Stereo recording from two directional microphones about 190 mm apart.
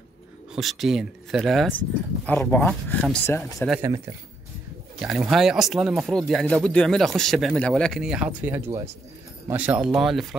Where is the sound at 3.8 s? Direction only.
15° right (ahead or behind).